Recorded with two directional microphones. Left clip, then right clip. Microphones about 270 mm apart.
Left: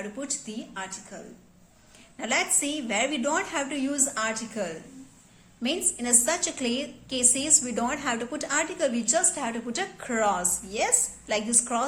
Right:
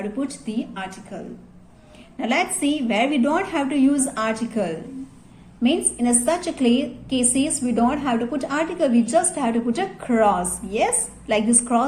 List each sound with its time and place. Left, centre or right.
0.0 s a woman's voice: centre